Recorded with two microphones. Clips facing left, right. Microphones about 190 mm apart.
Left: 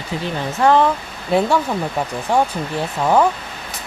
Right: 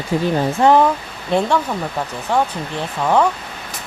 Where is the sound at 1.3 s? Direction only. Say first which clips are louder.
Left 1 dB; 5° left (ahead or behind).